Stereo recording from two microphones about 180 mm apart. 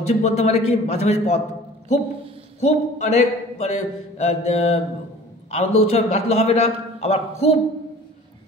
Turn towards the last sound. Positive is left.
turn(degrees=35)  # may be behind; listen again after turning